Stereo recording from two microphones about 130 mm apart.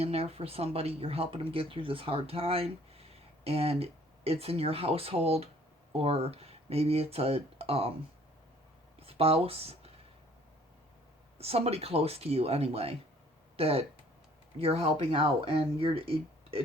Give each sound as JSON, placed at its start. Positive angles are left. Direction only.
{"t": 0.0, "sound": "speech", "side_deg": -50}
{"t": 9.0, "sound": "speech", "side_deg": -50}
{"t": 11.3, "sound": "speech", "side_deg": -50}